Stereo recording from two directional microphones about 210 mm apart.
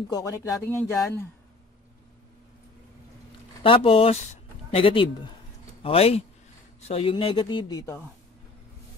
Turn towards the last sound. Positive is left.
turn(degrees=15)  # may be behind; listen again after turning